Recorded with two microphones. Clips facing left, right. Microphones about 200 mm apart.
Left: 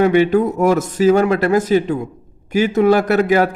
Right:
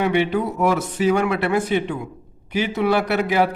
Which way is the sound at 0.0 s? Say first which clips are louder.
Left 7 dB; 45° left (ahead or behind).